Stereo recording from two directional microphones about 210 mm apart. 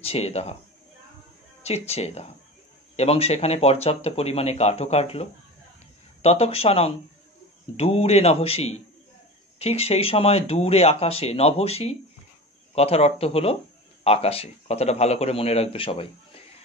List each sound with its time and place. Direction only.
0.0 s speech: 30° left (ahead or behind)
1.6 s speech: 30° left (ahead or behind)